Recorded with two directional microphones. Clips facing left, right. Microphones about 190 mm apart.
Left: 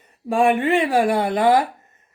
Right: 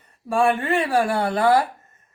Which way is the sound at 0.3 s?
15° left (ahead or behind).